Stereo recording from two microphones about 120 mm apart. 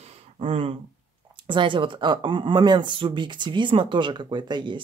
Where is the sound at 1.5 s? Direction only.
45° right (ahead or behind).